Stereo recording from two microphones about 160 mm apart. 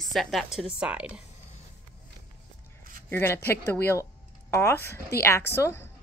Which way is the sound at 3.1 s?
15° left (ahead or behind).